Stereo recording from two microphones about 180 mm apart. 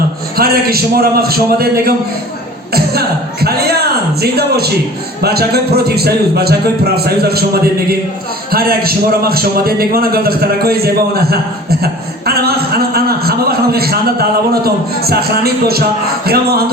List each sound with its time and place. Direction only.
0.3 s a man's voice: 55° right (ahead or behind)
3.4 s a man's voice: 60° right (ahead or behind)